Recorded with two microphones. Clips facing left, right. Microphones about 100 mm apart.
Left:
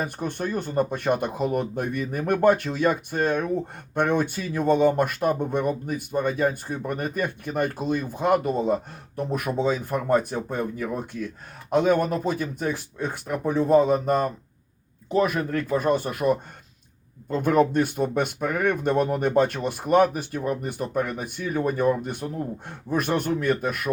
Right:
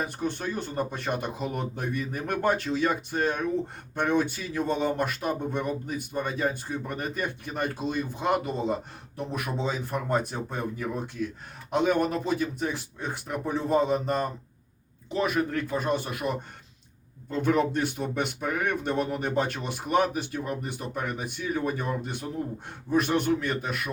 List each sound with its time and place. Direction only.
0.0 s speech: 50° left (ahead or behind)
17.4 s speech: 50° left (ahead or behind)